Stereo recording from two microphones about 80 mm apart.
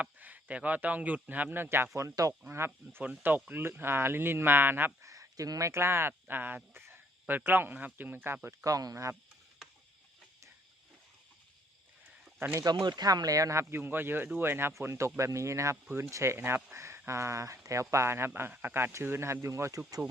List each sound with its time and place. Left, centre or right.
0.0 s a man's voice: right
2.0 s speech: right
2.5 s speech: right
5.0 s speech: right
8.4 s speech: right
12.8 s speech: right